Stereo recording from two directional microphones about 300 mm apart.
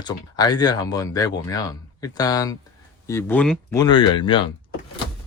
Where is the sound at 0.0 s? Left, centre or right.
Centre.